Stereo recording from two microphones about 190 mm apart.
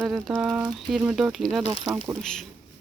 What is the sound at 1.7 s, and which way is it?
Speech, 15° right (ahead or behind).